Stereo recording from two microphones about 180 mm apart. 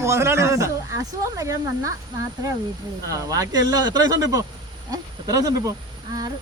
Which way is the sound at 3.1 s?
20° right (ahead or behind).